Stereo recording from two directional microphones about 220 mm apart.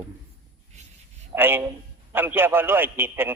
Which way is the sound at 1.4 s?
10° right (ahead or behind).